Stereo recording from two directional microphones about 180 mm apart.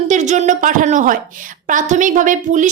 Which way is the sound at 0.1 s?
40° right (ahead or behind).